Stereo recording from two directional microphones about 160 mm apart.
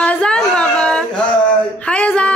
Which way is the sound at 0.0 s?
5° left (ahead or behind).